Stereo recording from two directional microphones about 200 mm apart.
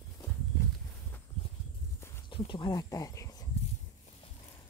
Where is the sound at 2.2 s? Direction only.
25° left (ahead or behind).